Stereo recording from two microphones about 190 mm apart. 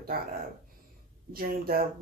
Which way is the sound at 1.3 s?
50° right (ahead or behind).